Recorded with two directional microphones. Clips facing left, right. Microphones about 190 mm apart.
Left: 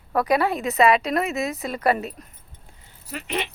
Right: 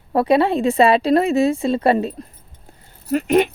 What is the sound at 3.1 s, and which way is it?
Speech, 45° right (ahead or behind).